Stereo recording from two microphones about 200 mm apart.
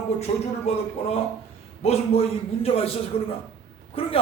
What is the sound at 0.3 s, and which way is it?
Speech, 30° left (ahead or behind).